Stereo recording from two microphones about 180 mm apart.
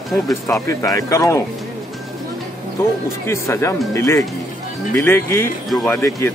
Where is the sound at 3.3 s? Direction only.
15° left (ahead or behind).